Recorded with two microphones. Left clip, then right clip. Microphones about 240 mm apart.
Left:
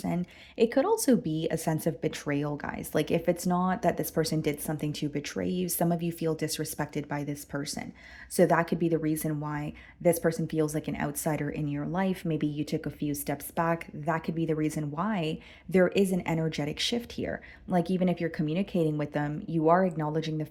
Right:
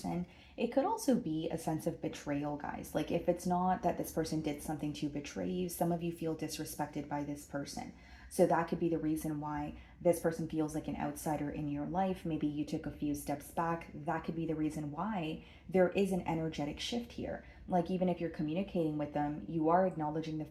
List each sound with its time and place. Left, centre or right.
0.5 s speech: left